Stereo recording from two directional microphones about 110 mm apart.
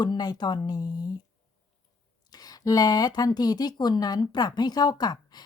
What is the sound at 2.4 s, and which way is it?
A woman's voice, 35° left (ahead or behind).